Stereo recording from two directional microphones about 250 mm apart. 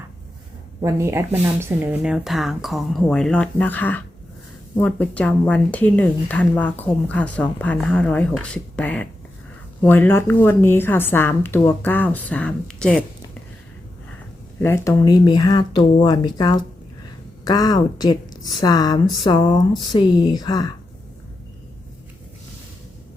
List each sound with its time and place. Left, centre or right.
0.8 s a woman's voice: centre
14.6 s a woman's voice: centre